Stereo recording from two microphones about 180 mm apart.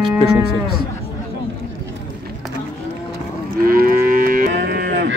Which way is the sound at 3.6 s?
55° right (ahead or behind).